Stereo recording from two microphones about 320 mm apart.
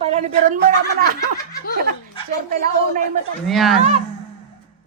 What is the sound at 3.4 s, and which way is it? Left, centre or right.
Speech, centre.